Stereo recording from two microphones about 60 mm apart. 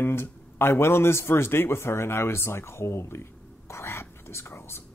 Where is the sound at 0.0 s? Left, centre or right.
Left.